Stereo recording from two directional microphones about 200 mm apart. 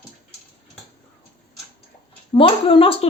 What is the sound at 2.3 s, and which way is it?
Speech, 25° left (ahead or behind).